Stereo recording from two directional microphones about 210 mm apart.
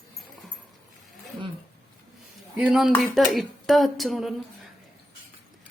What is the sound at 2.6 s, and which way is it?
Speech, centre (ahead or behind).